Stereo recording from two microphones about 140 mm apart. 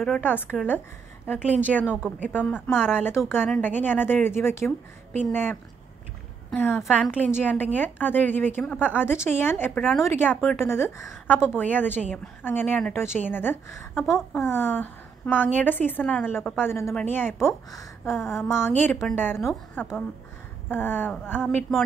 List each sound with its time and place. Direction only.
0.0 s a woman's voice: 10° left (ahead or behind)
1.9 s a woman's voice: 5° right (ahead or behind)
2.3 s a woman's voice: 15° left (ahead or behind)
14.0 s speech: centre (ahead or behind)
14.4 s a woman's voice: 15° left (ahead or behind)